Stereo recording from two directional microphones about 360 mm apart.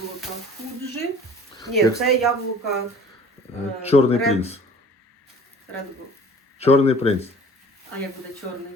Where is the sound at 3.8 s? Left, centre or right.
Centre.